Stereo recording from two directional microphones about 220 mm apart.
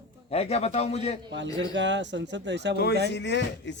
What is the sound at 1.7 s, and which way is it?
Speech, 55° right (ahead or behind).